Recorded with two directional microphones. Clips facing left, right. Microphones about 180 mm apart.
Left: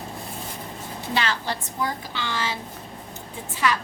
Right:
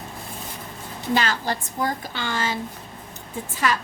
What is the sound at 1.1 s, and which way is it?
A woman's voice, 45° right (ahead or behind).